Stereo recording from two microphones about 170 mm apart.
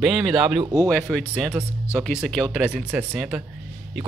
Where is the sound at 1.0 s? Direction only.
5° left (ahead or behind).